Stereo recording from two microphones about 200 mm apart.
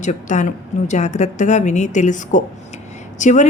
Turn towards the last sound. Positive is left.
turn(degrees=35)  # may be behind; listen again after turning